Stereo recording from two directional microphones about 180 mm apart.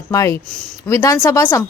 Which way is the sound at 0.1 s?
15° left (ahead or behind).